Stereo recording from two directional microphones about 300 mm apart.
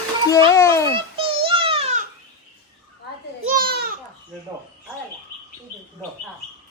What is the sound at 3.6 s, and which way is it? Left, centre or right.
Babbling, right.